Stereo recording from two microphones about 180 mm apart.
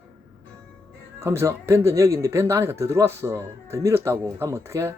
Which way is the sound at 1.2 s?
15° right (ahead or behind).